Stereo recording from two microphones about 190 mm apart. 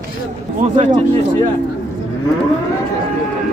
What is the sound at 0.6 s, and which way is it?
Speech, 35° right (ahead or behind).